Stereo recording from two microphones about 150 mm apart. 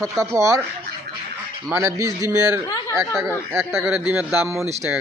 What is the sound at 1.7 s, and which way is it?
Speech, 20° right (ahead or behind).